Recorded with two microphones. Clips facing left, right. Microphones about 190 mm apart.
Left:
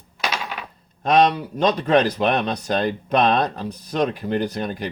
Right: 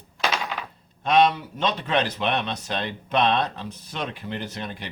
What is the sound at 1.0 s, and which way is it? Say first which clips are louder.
Speech: left 2 dB; 40° left (ahead or behind).